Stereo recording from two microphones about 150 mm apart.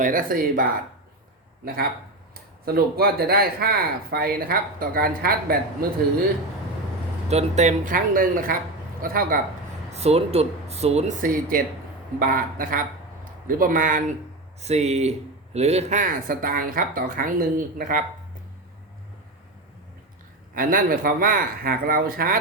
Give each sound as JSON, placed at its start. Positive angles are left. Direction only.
{"t": 0.0, "sound": "speech", "side_deg": -65}
{"t": 2.3, "sound": "speech", "side_deg": -90}
{"t": 7.3, "sound": "speech", "side_deg": -45}
{"t": 9.9, "sound": "speech", "side_deg": -45}
{"t": 11.2, "sound": "speech", "side_deg": -70}
{"t": 14.6, "sound": "speech", "side_deg": -45}
{"t": 20.6, "sound": "speech", "side_deg": -70}